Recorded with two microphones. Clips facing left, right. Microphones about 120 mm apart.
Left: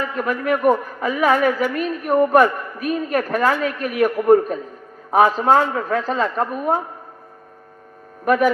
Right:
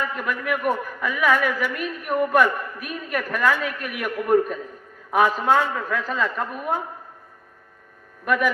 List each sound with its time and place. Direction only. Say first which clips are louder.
0.2 s a woman's voice: left 6 dB; 40° left (ahead or behind)
8.2 s a woman's voice: left 6 dB; 40° left (ahead or behind)